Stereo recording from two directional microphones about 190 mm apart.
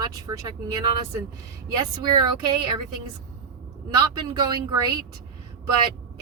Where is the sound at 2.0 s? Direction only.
25° right (ahead or behind).